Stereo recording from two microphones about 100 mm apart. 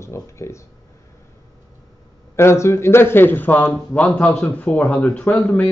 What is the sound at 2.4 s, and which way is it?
A man's voice, 25° left (ahead or behind).